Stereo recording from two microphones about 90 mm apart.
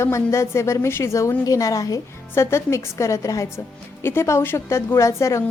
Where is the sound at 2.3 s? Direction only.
30° left (ahead or behind).